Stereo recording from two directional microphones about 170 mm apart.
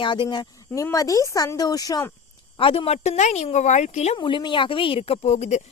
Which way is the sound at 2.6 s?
35° left (ahead or behind).